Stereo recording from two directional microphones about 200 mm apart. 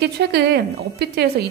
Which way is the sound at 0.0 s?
55° right (ahead or behind).